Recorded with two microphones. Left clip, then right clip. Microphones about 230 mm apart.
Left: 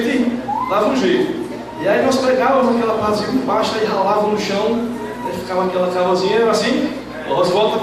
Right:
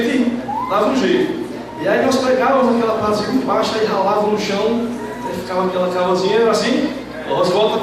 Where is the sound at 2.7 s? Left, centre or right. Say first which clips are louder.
Even; centre.